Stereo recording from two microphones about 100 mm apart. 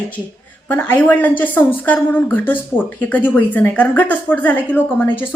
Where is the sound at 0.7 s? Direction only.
15° left (ahead or behind).